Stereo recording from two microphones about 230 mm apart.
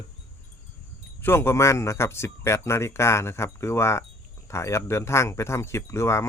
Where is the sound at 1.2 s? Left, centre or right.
Centre.